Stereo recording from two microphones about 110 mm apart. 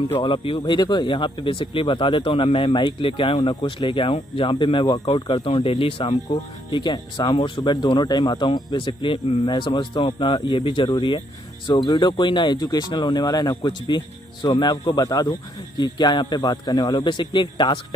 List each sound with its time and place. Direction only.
0.2 s speech: 45° left (ahead or behind)